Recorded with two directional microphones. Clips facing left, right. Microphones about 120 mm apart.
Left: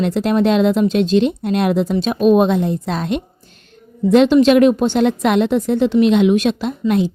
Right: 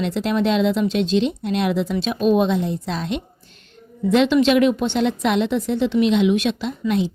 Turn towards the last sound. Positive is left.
turn(degrees=50)  # may be behind; listen again after turning